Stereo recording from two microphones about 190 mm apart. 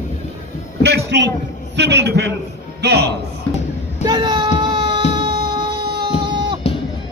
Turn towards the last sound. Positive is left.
turn(degrees=-25)  # may be behind; listen again after turning